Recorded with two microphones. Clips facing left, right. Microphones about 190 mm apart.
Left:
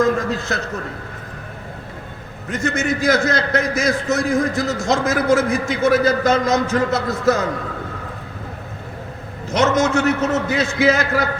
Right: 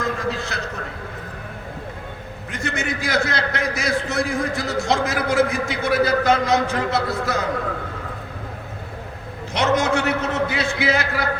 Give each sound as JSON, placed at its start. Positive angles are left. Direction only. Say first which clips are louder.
{"t": 0.0, "sound": "a man's voice", "louder": "left 6 dB", "side_deg": 45}
{"t": 2.5, "sound": "a man's voice", "louder": "left 6 dB", "side_deg": 45}
{"t": 9.5, "sound": "a man's voice", "louder": "left 3 dB", "side_deg": 45}